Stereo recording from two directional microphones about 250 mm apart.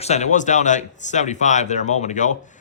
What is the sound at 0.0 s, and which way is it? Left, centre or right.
Speech, left.